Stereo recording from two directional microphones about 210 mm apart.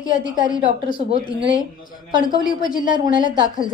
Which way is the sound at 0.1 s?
40° left (ahead or behind).